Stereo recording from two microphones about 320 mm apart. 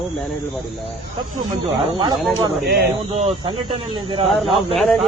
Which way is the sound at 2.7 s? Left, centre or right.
Right.